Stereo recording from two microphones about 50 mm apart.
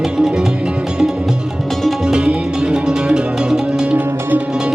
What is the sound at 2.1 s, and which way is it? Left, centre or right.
Music, centre.